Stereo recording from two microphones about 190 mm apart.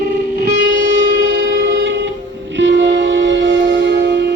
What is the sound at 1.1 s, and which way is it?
Music, 90° right.